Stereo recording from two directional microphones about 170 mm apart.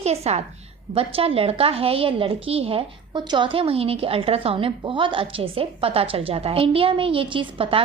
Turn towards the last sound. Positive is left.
turn(degrees=-30)  # may be behind; listen again after turning